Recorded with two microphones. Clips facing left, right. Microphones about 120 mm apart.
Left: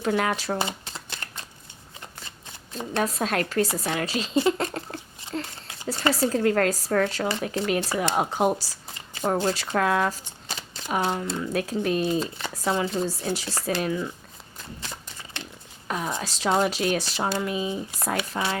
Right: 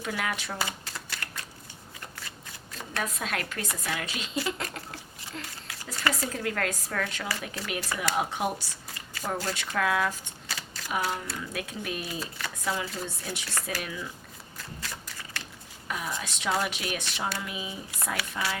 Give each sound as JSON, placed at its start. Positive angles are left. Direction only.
{"t": 0.0, "sound": "speech", "side_deg": 35}
{"t": 0.9, "sound": "shuffling cards", "side_deg": 25}
{"t": 2.7, "sound": "speech", "side_deg": 30}
{"t": 4.5, "sound": "a sound", "side_deg": 35}
{"t": 5.6, "sound": "speech", "side_deg": 25}
{"t": 9.7, "sound": "speech", "side_deg": 40}
{"t": 10.5, "sound": "shuffling cards", "side_deg": 25}
{"t": 11.3, "sound": "speech", "side_deg": 35}
{"t": 14.6, "sound": "a sound", "side_deg": 25}
{"t": 16.5, "sound": "speech", "side_deg": 30}
{"t": 18.2, "sound": "speech", "side_deg": 25}